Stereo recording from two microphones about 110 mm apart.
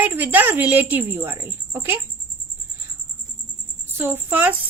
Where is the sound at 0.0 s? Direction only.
15° right (ahead or behind).